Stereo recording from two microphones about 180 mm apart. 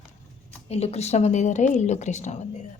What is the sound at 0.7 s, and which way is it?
A woman's voice, 35° left (ahead or behind).